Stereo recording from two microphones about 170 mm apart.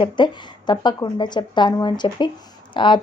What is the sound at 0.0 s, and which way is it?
A woman's voice, 25° left (ahead or behind).